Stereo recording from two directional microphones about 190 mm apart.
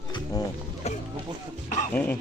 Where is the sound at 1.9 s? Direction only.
10° left (ahead or behind).